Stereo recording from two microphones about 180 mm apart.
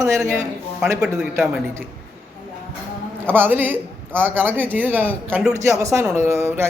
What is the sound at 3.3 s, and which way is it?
Speech, 10° right (ahead or behind).